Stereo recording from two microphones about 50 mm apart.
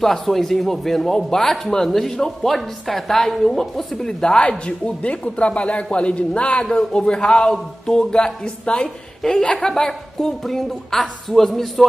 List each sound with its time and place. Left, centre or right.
0.0 s a woman's voice: centre